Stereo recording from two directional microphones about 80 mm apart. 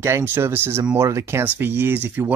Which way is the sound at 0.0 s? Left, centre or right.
Right.